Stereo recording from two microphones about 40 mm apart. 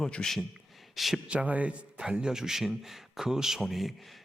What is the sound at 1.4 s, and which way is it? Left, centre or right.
Speech, right.